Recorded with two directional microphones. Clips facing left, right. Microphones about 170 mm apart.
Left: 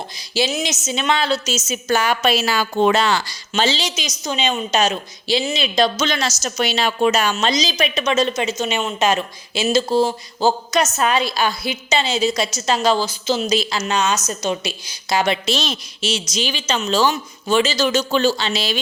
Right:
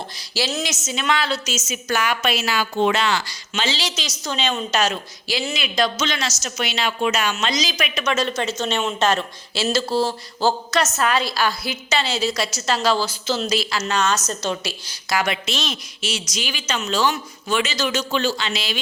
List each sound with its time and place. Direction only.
0.2 s a woman's voice: 20° left (ahead or behind); by 3.8 s 35° left (ahead or behind)
3.8 s a woman's voice: 15° left (ahead or behind)